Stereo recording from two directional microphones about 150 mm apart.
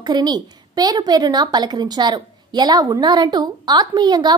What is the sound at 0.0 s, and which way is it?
A woman's voice, 30° right (ahead or behind).